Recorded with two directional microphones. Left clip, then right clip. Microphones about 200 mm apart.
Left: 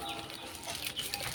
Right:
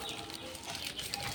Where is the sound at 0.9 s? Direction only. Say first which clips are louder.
Left 2 dB; 20° left (ahead or behind).